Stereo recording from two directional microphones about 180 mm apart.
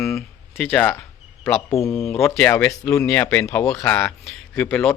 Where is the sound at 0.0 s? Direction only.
10° left (ahead or behind).